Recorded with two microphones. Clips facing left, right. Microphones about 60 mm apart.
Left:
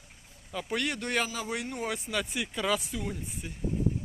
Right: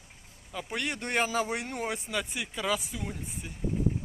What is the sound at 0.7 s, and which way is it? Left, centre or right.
Speech, right.